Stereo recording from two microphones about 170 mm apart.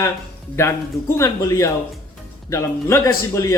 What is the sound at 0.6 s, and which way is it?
Speech, 15° left (ahead or behind).